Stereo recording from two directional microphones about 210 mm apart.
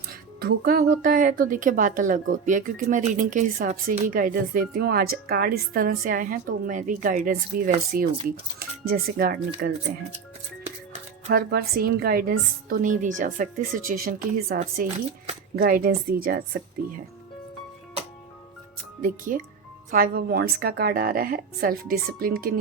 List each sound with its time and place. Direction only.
0.1 s a woman's voice: 45° right (ahead or behind)
11.3 s a woman's voice: 45° right (ahead or behind)
19.0 s a woman's voice: 40° right (ahead or behind)